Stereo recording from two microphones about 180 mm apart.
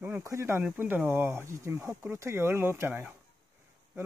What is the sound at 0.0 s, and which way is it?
Speech, 15° right (ahead or behind).